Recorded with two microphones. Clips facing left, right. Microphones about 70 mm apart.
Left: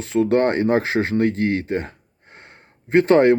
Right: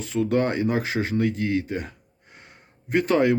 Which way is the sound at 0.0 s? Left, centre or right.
Left.